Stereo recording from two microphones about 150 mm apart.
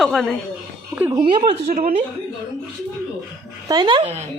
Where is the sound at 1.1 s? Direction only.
35° right (ahead or behind).